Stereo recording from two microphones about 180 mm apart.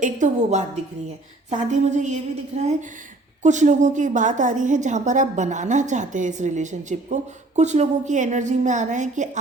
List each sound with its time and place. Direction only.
0.0 s a woman's voice: 45° right (ahead or behind)